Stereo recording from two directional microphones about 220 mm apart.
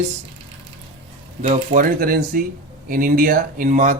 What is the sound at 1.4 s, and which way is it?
Speech, 35° right (ahead or behind).